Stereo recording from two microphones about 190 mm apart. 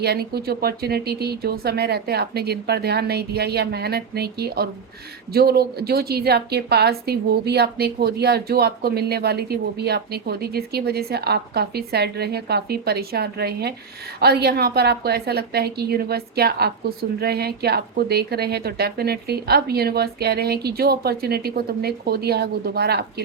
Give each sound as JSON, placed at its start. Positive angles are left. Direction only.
{"t": 0.0, "sound": "a woman's voice", "side_deg": -55}